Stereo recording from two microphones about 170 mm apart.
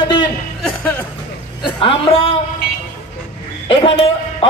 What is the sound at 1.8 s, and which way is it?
Speech, 35° left (ahead or behind).